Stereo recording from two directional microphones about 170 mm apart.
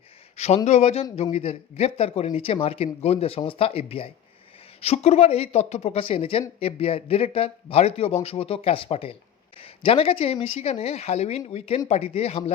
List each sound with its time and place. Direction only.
0.3 s speech: 40° left (ahead or behind)